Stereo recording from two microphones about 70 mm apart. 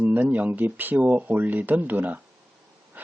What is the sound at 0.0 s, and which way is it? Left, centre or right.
Speech, right.